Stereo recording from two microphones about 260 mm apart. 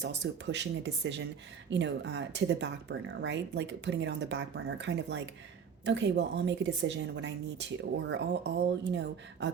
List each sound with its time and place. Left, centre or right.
0.0 s a woman's voice: right